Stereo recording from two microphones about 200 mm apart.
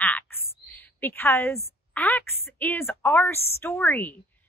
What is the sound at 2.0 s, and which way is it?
A woman's voice, 10° left (ahead or behind).